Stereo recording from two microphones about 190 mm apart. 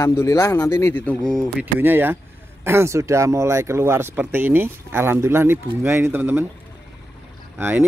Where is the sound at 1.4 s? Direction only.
10° right (ahead or behind).